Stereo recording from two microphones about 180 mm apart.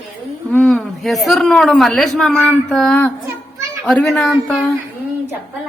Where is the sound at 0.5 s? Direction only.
5° left (ahead or behind).